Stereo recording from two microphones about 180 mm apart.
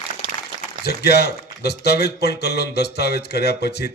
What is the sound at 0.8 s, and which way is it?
Speech, 65° left (ahead or behind).